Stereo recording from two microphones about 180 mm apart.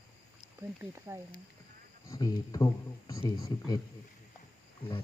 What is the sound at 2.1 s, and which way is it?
Speech, 20° left (ahead or behind).